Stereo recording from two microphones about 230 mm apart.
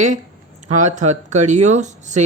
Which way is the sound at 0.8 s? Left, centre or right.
Right.